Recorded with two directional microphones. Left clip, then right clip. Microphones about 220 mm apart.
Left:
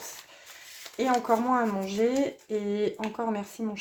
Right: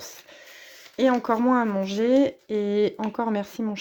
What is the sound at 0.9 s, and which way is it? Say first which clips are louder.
Speech: right 3 dB; 45° right (ahead or behind).